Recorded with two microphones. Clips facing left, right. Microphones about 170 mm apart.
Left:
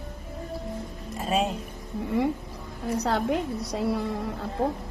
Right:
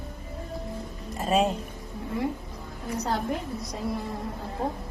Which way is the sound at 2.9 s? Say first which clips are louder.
Left 3 dB; 70° left (ahead or behind).